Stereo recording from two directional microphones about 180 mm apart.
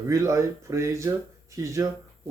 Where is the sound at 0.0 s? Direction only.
15° right (ahead or behind).